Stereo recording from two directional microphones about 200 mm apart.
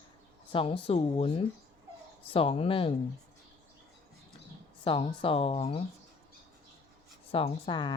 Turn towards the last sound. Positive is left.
turn(degrees=20)  # may be behind; listen again after turning